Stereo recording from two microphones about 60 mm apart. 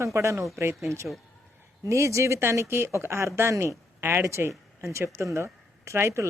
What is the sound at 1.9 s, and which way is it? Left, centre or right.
Speech, right.